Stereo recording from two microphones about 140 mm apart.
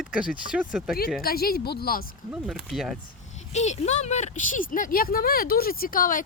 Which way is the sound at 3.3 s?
55° left (ahead or behind).